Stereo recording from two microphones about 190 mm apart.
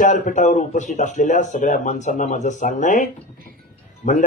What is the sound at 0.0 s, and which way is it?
Speech, 40° left (ahead or behind).